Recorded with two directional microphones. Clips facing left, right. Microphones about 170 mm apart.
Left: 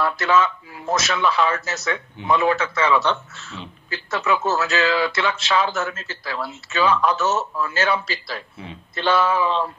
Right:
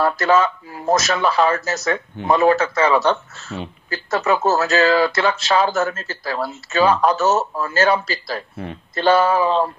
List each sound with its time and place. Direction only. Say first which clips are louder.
0.0 s speech: right 3 dB; 40° right (ahead or behind)